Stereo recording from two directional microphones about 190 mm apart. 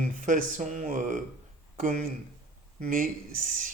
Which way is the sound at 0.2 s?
40° right (ahead or behind).